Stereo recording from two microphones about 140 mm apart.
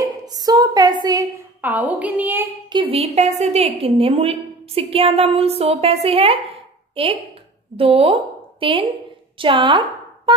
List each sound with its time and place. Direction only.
0.0 s a sound: 25° right (ahead or behind)
1.6 s a woman's voice: 10° right (ahead or behind)
2.7 s a woman's voice: 40° right (ahead or behind)